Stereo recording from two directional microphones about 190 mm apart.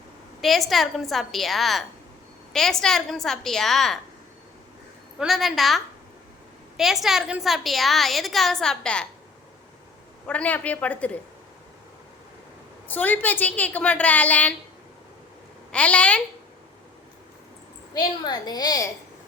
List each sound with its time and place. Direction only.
0.4 s a woman's voice: centre (ahead or behind)
5.2 s a woman's voice: centre (ahead or behind)
10.2 s a woman's voice: 10° left (ahead or behind)
12.9 s a woman's voice: 10° left (ahead or behind)
15.7 s a woman's voice: 5° left (ahead or behind)
17.9 s a woman's voice: 20° left (ahead or behind)